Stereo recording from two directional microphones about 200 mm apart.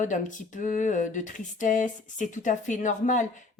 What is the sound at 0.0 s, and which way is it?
Speech, 40° left (ahead or behind).